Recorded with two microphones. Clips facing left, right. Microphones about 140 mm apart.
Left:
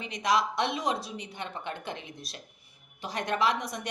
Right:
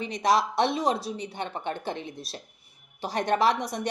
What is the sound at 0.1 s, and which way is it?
A woman's voice, 35° right (ahead or behind).